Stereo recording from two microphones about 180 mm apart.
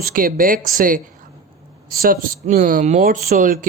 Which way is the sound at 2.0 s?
50° right (ahead or behind).